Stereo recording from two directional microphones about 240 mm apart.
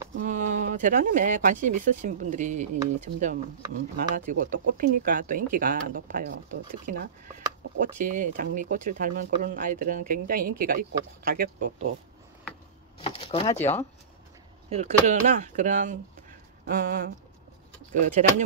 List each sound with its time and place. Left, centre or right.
0.2 s speech: right
13.0 s speech: left
14.7 s speech: right